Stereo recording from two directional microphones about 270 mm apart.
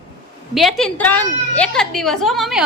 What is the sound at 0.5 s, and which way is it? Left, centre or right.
A woman's voice, centre.